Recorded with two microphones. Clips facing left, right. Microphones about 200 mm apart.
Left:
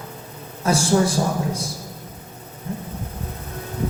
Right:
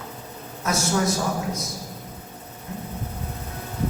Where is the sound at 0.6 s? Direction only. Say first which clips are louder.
Left 5 dB; 30° left (ahead or behind).